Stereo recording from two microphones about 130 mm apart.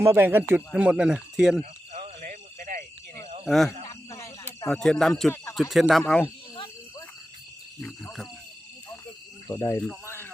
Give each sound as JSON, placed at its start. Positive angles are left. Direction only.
{"t": 0.0, "sound": "speech", "side_deg": -20}
{"t": 1.9, "sound": "a sound", "side_deg": -80}
{"t": 3.4, "sound": "speech", "side_deg": 0}
{"t": 3.8, "sound": "cricket", "side_deg": 25}
{"t": 4.7, "sound": "speech", "side_deg": 5}
{"t": 7.8, "sound": "speech", "side_deg": 5}
{"t": 9.5, "sound": "speech", "side_deg": 25}
{"t": 10.1, "sound": "a sound", "side_deg": 15}